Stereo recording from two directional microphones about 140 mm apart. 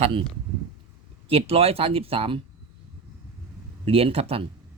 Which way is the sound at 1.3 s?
45° right (ahead or behind).